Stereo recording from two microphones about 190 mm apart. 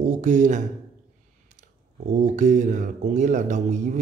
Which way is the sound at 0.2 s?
40° right (ahead or behind).